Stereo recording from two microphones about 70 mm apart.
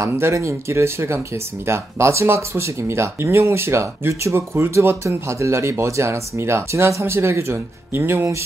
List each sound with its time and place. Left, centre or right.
0.0 s speech: right